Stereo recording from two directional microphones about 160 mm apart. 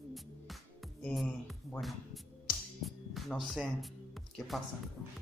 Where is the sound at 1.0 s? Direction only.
Centre (ahead or behind).